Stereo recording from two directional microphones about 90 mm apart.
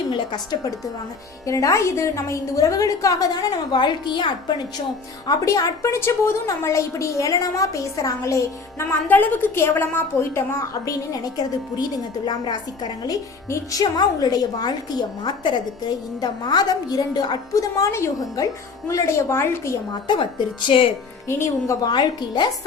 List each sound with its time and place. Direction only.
1.5 s a woman's voice: 35° left (ahead or behind); by 4.5 s 60° left (ahead or behind)
5.2 s a woman's voice: 40° left (ahead or behind)
8.9 s a woman's voice: 20° left (ahead or behind)
19.9 s speech: 55° left (ahead or behind)
21.2 s speech: 30° left (ahead or behind)
21.8 s speech: 55° left (ahead or behind)